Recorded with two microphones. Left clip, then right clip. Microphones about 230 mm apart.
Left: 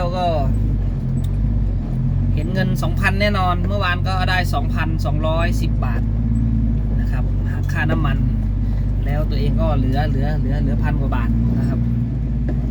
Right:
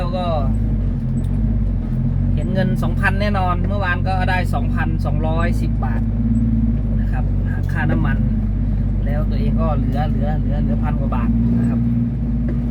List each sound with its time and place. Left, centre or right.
2.6 s speech: centre
7.8 s speech: centre